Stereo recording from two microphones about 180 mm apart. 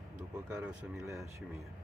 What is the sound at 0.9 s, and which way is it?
Speech, 15° right (ahead or behind).